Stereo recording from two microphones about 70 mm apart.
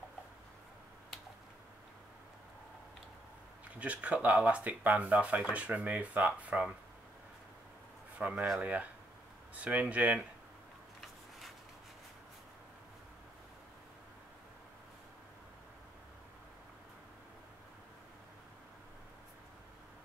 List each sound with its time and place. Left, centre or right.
3.6 s speech: right
8.2 s speech: centre